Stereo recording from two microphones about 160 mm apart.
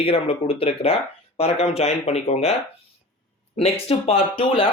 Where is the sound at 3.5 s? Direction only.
40° left (ahead or behind).